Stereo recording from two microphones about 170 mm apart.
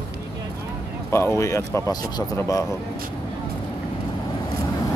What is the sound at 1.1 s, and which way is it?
Speech, 15° left (ahead or behind).